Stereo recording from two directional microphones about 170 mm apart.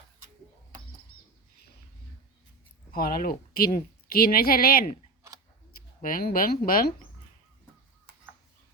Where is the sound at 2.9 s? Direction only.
60° left (ahead or behind).